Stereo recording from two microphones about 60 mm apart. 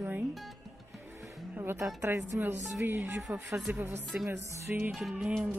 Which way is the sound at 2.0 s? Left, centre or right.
Right.